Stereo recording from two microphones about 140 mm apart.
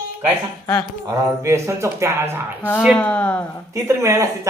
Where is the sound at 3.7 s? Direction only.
20° right (ahead or behind).